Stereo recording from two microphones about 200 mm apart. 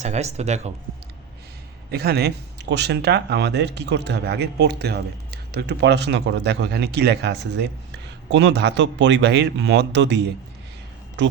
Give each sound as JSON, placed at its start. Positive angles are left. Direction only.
{"t": 0.0, "sound": "speech", "side_deg": -35}
{"t": 1.9, "sound": "speech", "side_deg": -50}